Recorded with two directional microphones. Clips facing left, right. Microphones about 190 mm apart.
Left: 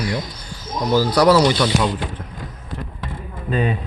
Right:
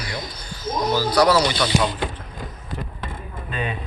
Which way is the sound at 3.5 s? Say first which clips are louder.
Left 8 dB; 40° left (ahead or behind).